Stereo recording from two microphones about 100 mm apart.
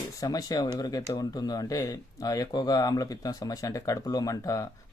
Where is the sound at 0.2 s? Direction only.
35° left (ahead or behind).